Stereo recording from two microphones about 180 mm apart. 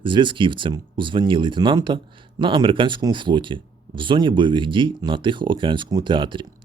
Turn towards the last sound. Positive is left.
turn(degrees=-25)  # may be behind; listen again after turning